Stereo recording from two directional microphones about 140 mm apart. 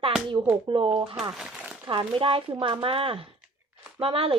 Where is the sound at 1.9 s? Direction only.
40° right (ahead or behind).